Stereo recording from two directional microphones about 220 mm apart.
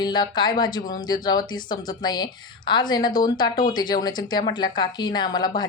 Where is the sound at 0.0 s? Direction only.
20° left (ahead or behind).